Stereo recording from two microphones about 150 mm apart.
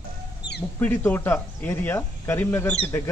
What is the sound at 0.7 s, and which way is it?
Speech, 15° left (ahead or behind).